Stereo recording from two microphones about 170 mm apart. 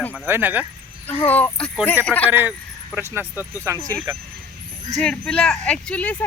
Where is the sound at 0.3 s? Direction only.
10° right (ahead or behind).